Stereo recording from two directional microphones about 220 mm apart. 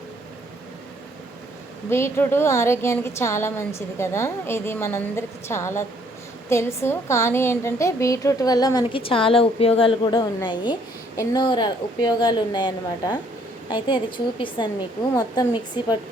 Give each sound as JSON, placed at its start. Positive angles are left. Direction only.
{"t": 1.9, "sound": "a woman's voice", "side_deg": 10}